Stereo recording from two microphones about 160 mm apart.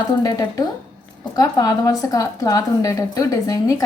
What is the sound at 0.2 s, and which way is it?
Speech, 25° left (ahead or behind).